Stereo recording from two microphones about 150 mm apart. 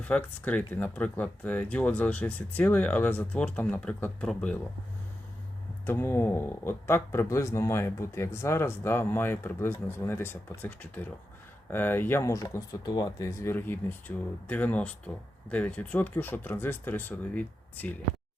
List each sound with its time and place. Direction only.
0.0 s speech: 10° left (ahead or behind)
5.8 s speech: 15° left (ahead or behind)